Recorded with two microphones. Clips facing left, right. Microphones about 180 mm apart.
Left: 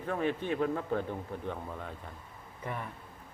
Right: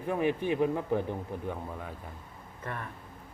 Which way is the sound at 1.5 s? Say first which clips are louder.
Right 1 dB; 5° right (ahead or behind).